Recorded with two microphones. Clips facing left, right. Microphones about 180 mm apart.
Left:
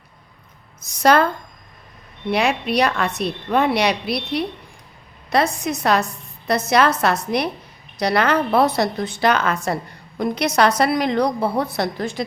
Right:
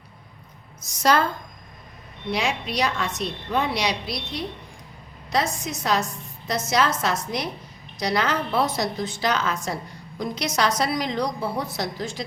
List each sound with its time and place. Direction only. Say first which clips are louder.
1.0 s a woman's voice: left 5 dB; 60° left (ahead or behind)
2.3 s a woman's voice: left 7 dB; 60° left (ahead or behind)